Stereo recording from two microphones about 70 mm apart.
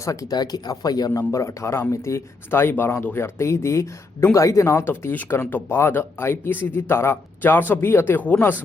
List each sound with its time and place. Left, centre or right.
0.0 s speech: left
0.3 s speech: left
1.3 s speech: left